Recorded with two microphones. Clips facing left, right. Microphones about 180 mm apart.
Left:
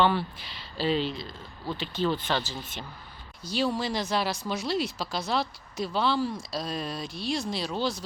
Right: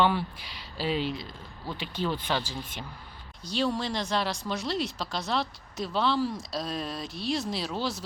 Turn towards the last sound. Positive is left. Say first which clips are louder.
# left 2 dB
turn(degrees=-5)  # may be behind; listen again after turning